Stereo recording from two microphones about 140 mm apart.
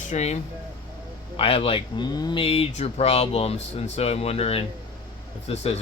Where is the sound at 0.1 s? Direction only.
50° left (ahead or behind).